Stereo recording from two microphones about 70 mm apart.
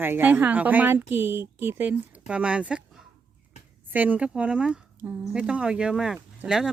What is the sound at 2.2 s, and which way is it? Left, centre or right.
Speech, centre.